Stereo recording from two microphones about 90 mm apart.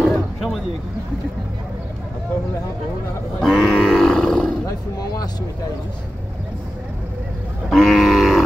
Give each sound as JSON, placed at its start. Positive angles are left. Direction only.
{"t": 0.0, "sound": "a sound", "side_deg": 0}
{"t": 3.3, "sound": "cattle", "side_deg": 5}
{"t": 3.7, "sound": "grunt", "side_deg": 5}
{"t": 4.6, "sound": "speech", "side_deg": 45}
{"t": 7.7, "sound": "livestock", "side_deg": 5}